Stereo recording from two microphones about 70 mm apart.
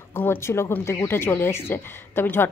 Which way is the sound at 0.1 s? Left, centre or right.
Left.